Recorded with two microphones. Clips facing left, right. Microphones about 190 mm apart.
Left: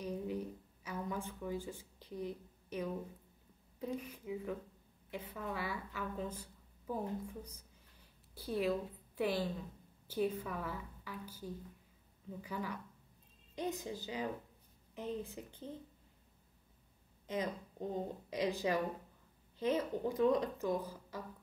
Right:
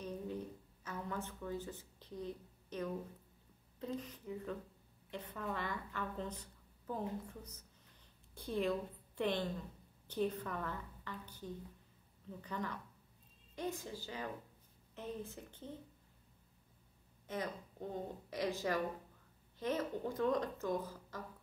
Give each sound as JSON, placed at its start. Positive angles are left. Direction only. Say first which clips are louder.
{"t": 0.0, "sound": "a sound", "louder": "left 3 dB", "side_deg": 10}
{"t": 3.8, "sound": "a woman's voice", "louder": "left 2 dB", "side_deg": 10}
{"t": 13.6, "sound": "a woman's voice", "louder": "left 2 dB", "side_deg": 20}
{"t": 17.3, "sound": "a woman's voice", "louder": "left 3 dB", "side_deg": 20}